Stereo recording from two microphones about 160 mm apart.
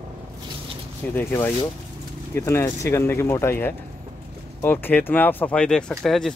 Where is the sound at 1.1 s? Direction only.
15° left (ahead or behind).